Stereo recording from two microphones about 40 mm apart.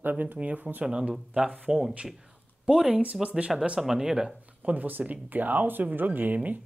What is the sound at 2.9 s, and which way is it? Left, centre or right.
Speech, right.